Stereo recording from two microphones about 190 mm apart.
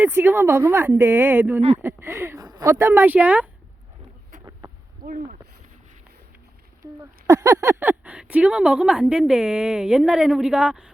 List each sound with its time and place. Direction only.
0.0 s speech: 10° right (ahead or behind)
5.0 s speech: 45° right (ahead or behind)
6.8 s a sound: 20° right (ahead or behind)
7.3 s speech: 15° right (ahead or behind)